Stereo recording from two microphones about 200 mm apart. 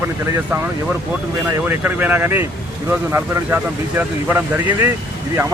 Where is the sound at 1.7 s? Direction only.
10° right (ahead or behind).